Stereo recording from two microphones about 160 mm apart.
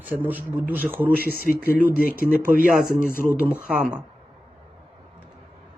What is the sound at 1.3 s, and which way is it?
Speech, 65° left (ahead or behind).